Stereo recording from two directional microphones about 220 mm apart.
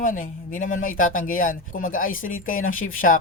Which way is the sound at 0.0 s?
35° left (ahead or behind).